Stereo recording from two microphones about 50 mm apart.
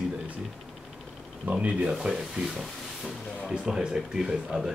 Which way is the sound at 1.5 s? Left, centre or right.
Right.